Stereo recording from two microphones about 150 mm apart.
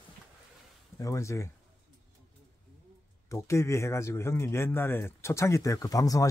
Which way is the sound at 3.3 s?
20° left (ahead or behind).